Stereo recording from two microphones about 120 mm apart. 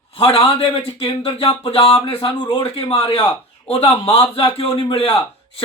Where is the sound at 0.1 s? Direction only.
55° left (ahead or behind).